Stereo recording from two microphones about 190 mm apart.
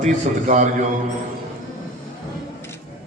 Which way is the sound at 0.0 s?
40° right (ahead or behind).